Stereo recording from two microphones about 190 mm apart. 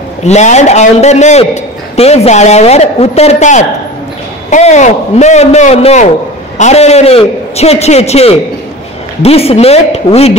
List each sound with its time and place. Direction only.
0.2 s a man's voice: 35° left (ahead or behind)